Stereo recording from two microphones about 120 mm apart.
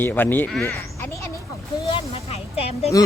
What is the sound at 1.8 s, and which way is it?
Speech, 50° left (ahead or behind).